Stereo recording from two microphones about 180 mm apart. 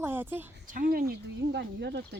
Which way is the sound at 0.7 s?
50° right (ahead or behind).